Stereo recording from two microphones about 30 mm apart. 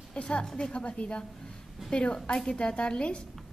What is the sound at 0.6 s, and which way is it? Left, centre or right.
A woman's voice, left.